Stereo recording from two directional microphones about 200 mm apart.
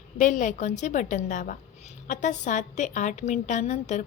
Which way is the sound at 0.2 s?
40° left (ahead or behind).